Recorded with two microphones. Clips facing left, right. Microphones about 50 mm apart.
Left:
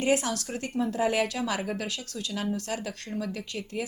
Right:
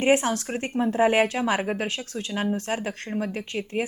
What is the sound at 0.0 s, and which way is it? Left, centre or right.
A woman's voice, right.